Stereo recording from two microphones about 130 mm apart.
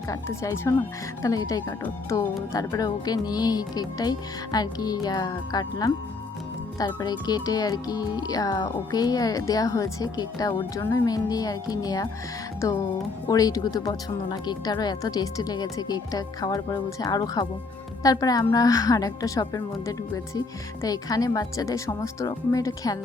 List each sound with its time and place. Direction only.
0.1 s speech: 25° left (ahead or behind)